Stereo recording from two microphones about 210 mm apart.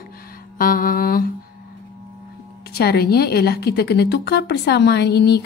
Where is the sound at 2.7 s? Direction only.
50° left (ahead or behind).